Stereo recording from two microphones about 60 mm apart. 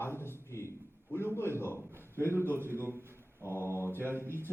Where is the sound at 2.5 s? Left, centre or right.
Right.